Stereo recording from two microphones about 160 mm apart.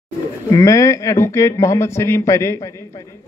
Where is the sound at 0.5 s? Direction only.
20° left (ahead or behind).